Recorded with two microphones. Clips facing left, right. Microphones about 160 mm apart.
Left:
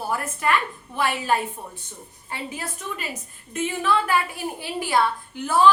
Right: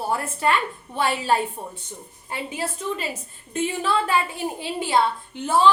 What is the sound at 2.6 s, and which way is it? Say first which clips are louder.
A woman's voice: right 5 dB; 30° right (ahead or behind).